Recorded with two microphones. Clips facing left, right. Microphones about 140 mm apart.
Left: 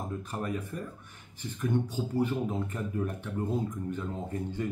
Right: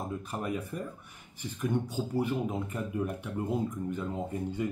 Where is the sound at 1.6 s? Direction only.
10° right (ahead or behind).